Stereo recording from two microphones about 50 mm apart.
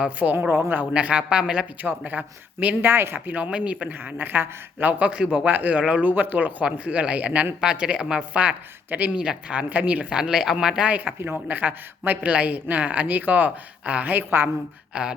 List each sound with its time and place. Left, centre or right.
0.2 s speech: centre
1.8 s speech: right
2.8 s speech: right
3.5 s speech: right
3.9 s speech: right
5.5 s speech: right
6.0 s speech: right
9.1 s speech: centre
9.6 s speech: right
10.1 s speech: centre
10.8 s speech: right
14.9 s speech: right